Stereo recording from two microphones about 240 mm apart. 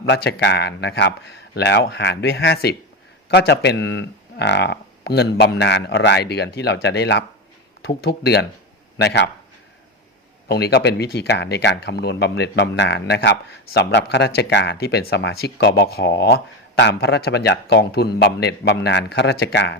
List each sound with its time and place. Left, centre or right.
0.0 s speech: left
10.5 s speech: left